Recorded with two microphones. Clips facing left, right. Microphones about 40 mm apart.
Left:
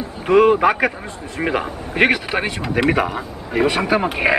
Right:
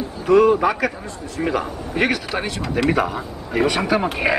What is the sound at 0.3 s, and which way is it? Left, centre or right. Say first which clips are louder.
A man's voice: left 1 dB; left.